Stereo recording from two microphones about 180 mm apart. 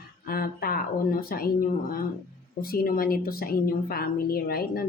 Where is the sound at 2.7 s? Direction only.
55° left (ahead or behind).